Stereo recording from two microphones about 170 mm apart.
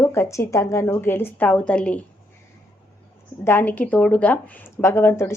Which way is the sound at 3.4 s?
10° left (ahead or behind).